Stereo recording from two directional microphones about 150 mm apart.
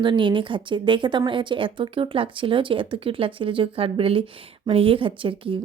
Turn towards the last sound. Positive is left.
turn(degrees=-35)  # may be behind; listen again after turning